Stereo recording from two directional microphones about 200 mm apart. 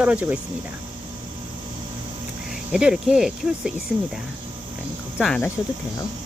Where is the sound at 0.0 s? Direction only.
5° right (ahead or behind).